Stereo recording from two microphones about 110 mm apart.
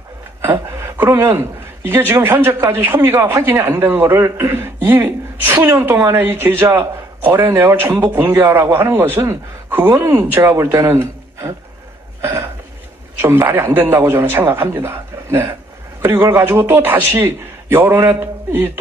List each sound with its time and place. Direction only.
0.4 s a man's voice: 20° right (ahead or behind)
12.2 s throat clearing: 20° right (ahead or behind)
13.2 s a man's voice: 20° right (ahead or behind)